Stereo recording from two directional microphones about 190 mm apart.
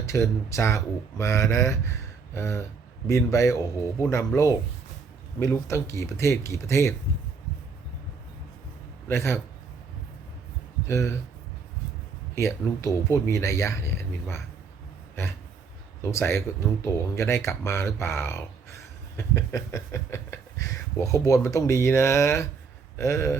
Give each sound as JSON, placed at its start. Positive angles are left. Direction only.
{"t": 0.0, "sound": "speech", "side_deg": 15}
{"t": 9.0, "sound": "speech", "side_deg": 15}
{"t": 10.8, "sound": "speech", "side_deg": 15}
{"t": 12.3, "sound": "speech", "side_deg": 15}
{"t": 16.0, "sound": "speech", "side_deg": 15}